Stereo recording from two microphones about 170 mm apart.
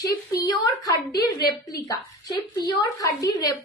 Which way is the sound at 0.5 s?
20° left (ahead or behind).